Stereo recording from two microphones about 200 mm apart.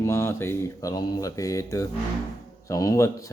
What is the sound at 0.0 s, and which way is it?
Speech, 15° left (ahead or behind).